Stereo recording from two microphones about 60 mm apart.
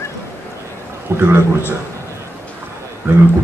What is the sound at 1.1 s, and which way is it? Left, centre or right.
Speech, right.